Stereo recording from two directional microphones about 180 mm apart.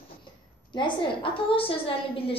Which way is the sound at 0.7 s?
25° left (ahead or behind).